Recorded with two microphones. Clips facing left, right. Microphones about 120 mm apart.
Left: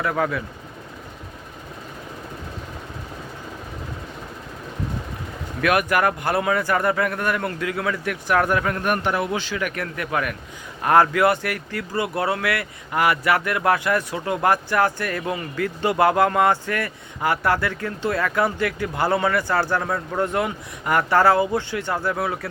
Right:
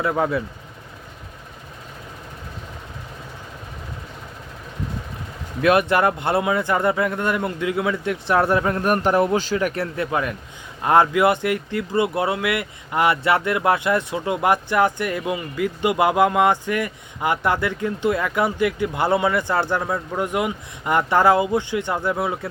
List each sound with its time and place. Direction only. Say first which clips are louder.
0.0 s speech: right 2 dB; 25° right (ahead or behind)
5.6 s speech: right 3 dB; 25° right (ahead or behind)